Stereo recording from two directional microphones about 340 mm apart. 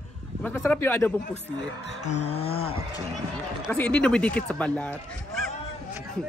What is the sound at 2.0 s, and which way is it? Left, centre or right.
Speech, centre.